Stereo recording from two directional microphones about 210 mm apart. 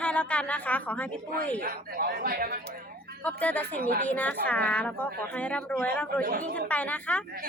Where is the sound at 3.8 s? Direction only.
40° right (ahead or behind).